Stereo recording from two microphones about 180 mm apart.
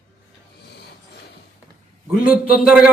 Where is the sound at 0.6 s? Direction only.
65° left (ahead or behind).